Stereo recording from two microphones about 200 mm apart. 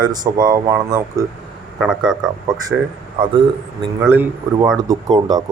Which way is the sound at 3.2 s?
25° right (ahead or behind).